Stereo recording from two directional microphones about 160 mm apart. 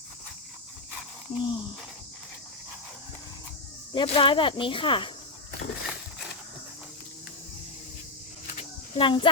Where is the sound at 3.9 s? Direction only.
30° left (ahead or behind).